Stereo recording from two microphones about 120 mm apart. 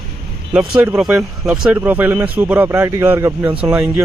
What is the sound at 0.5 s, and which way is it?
Speech, 15° right (ahead or behind).